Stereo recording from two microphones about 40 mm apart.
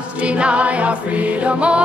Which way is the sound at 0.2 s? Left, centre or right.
Right.